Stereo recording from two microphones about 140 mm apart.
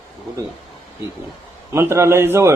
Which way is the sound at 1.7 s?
20° right (ahead or behind).